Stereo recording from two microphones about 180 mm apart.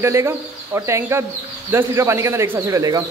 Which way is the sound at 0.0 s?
15° right (ahead or behind).